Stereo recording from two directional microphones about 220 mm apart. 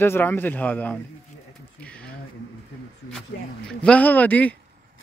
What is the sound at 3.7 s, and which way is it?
Speech, 5° left (ahead or behind).